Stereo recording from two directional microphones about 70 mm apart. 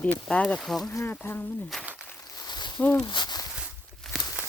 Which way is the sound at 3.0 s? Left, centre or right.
Left.